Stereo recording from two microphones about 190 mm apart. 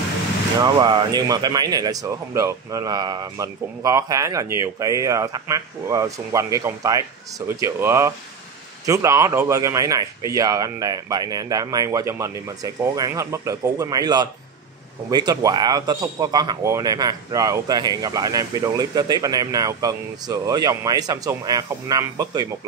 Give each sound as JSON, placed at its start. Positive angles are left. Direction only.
{"t": 0.6, "sound": "speech", "side_deg": -25}